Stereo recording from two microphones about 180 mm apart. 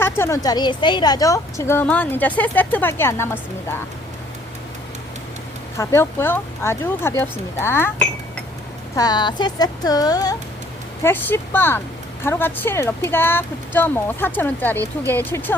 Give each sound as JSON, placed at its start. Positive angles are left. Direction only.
{"t": 0.0, "sound": "a woman's voice", "side_deg": 15}
{"t": 5.7, "sound": "a woman's voice", "side_deg": 15}
{"t": 9.0, "sound": "a woman's voice", "side_deg": 25}